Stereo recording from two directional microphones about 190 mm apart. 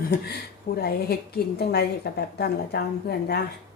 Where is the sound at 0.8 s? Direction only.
55° left (ahead or behind).